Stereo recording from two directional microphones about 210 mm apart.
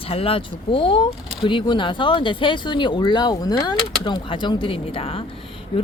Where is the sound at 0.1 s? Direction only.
25° left (ahead or behind).